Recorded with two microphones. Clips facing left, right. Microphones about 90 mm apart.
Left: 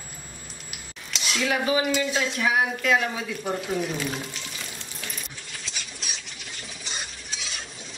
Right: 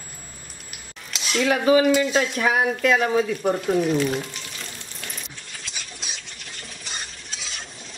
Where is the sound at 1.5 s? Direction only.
45° right (ahead or behind).